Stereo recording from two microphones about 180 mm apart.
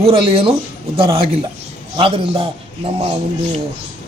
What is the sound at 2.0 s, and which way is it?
Speech, 30° right (ahead or behind).